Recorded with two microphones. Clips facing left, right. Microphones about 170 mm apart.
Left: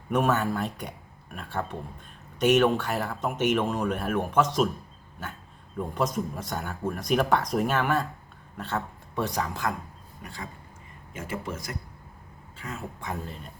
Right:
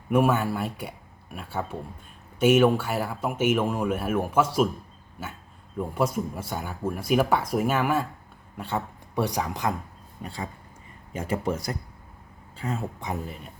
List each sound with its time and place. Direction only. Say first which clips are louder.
0.1 s speech: right 2 dB; 10° right (ahead or behind)
11.1 s speech: right 7 dB; 35° right (ahead or behind)
13.0 s speech: right 2 dB; 15° right (ahead or behind)